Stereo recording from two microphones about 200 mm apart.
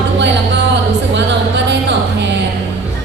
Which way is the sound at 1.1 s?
60° right (ahead or behind).